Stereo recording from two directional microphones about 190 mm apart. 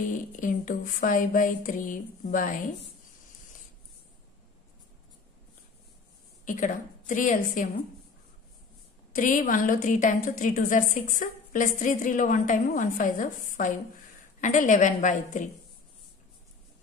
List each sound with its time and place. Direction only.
0.4 s a woman's voice: 45° left (ahead or behind)
6.4 s a woman's voice: 45° left (ahead or behind)
9.1 s a woman's voice: 45° left (ahead or behind)